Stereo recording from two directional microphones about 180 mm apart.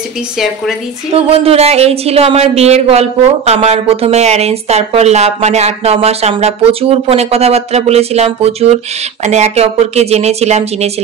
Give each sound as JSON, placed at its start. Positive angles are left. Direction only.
{"t": 1.1, "sound": "speech", "side_deg": -35}